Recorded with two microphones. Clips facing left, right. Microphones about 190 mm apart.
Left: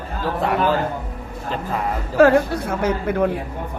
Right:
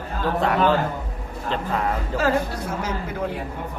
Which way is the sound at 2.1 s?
60° left (ahead or behind).